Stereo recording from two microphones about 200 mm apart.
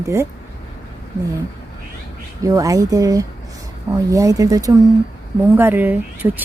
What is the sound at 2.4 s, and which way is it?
Speech, 15° right (ahead or behind).